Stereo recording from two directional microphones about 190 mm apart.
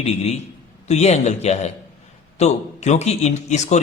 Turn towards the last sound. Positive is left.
turn(degrees=35)  # may be behind; listen again after turning